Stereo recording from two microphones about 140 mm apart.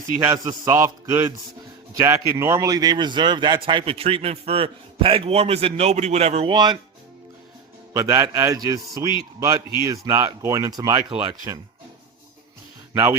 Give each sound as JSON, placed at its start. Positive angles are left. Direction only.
{"t": 0.3, "sound": "a man's voice", "side_deg": -30}
{"t": 6.5, "sound": "speech", "side_deg": -30}
{"t": 7.9, "sound": "speech", "side_deg": -25}
{"t": 12.9, "sound": "speech", "side_deg": -15}